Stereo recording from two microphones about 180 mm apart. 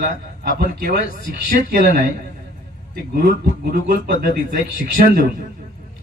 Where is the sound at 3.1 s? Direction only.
55° right (ahead or behind).